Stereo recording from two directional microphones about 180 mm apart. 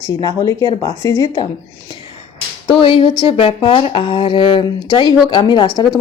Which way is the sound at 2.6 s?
30° left (ahead or behind).